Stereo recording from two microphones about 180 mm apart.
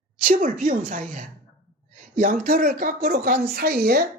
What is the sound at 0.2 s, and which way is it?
A woman's voice, 50° right (ahead or behind).